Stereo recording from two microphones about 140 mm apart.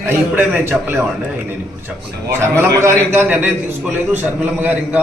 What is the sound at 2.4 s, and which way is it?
A man's voice, 20° right (ahead or behind).